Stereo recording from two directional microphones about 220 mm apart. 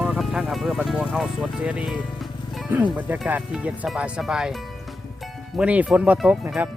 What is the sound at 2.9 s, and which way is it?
Speech, 10° right (ahead or behind).